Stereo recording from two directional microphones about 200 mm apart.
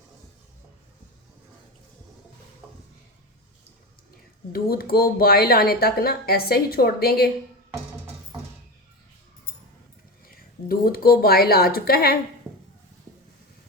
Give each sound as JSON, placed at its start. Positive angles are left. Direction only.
{"t": 4.5, "sound": "speech", "side_deg": 50}
{"t": 10.2, "sound": "a woman's voice", "side_deg": 45}